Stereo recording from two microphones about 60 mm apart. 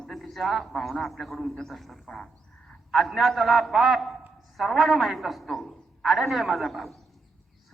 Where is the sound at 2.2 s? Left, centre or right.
Centre.